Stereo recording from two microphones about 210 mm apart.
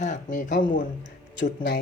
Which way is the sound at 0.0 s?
35° left (ahead or behind).